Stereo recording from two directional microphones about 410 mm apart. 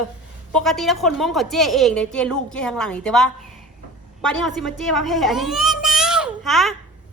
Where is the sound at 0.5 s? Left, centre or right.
Centre.